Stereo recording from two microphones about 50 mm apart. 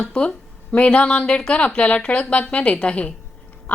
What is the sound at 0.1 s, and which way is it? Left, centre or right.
A woman's voice, left.